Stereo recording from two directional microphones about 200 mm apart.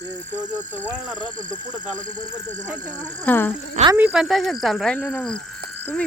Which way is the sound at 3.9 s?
5° right (ahead or behind).